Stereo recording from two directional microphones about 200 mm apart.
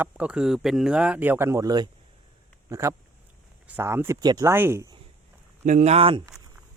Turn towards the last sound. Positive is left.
turn(degrees=-30)  # may be behind; listen again after turning